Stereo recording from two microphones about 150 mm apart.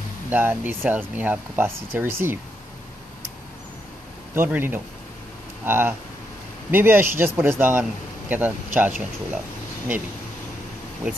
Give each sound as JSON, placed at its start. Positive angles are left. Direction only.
{"t": 0.3, "sound": "speech", "side_deg": -10}
{"t": 4.4, "sound": "speech", "side_deg": -15}